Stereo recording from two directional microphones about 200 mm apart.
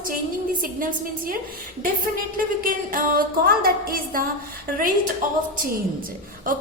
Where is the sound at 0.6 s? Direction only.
45° right (ahead or behind).